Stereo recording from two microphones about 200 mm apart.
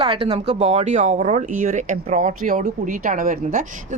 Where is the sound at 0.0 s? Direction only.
30° right (ahead or behind).